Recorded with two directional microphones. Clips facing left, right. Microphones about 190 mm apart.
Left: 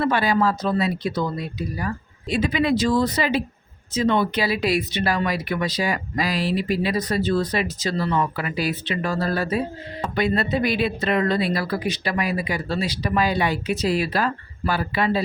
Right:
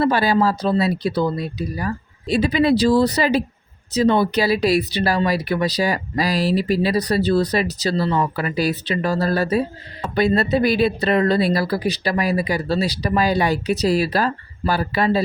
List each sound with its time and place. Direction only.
0.0 s speech: 35° right (ahead or behind)